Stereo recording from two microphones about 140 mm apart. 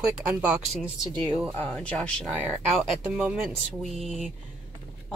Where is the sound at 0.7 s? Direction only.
Centre (ahead or behind).